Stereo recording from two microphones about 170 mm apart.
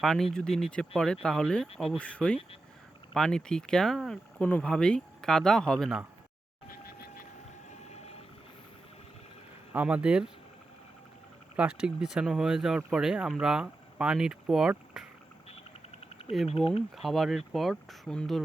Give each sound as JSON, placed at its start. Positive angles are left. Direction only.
{"t": 0.0, "sound": "speech", "side_deg": 0}
{"t": 7.9, "sound": "vehicle", "side_deg": 40}
{"t": 9.7, "sound": "speech", "side_deg": -5}
{"t": 11.8, "sound": "speech", "side_deg": -5}
{"t": 16.6, "sound": "speech", "side_deg": 0}